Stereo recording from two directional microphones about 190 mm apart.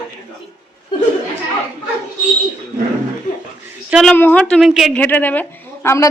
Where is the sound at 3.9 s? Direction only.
Centre (ahead or behind).